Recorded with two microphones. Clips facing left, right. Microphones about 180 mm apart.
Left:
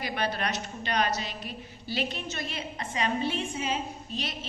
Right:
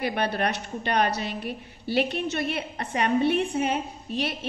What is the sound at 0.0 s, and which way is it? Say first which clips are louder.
A woman's voice: right 5 dB; 60° right (ahead or behind).